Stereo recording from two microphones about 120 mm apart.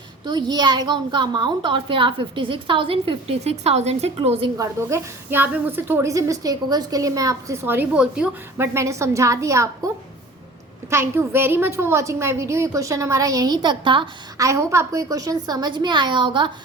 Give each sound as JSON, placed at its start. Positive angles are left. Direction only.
{"t": 0.3, "sound": "a child's voice", "side_deg": -35}
{"t": 4.5, "sound": "a woman's voice", "side_deg": -25}
{"t": 8.5, "sound": "a woman's voice", "side_deg": -20}
{"t": 14.3, "sound": "a woman's voice", "side_deg": -25}